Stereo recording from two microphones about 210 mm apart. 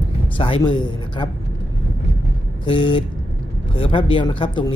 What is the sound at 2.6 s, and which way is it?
Speech, 25° left (ahead or behind).